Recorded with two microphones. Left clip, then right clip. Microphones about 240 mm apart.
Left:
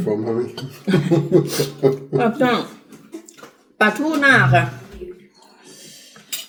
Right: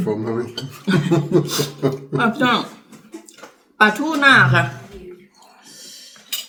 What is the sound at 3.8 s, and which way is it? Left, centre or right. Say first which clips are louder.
Chuckle: right 2 dB; centre.